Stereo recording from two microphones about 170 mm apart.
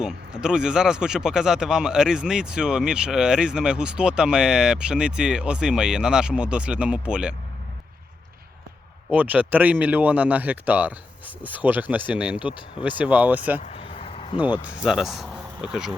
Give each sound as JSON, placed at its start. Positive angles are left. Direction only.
{"t": 0.0, "sound": "speech", "side_deg": -5}
{"t": 9.0, "sound": "speech", "side_deg": -10}
{"t": 13.6, "sound": "vehicle", "side_deg": 40}
{"t": 14.8, "sound": "speech", "side_deg": 0}